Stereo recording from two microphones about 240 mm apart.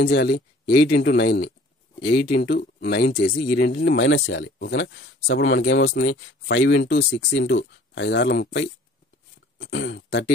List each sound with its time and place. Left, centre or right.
0.0 s speech: left